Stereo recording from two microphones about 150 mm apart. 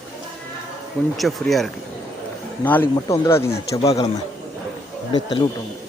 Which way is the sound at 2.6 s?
15° left (ahead or behind).